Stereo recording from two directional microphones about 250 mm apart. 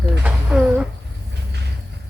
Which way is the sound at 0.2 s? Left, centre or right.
Centre.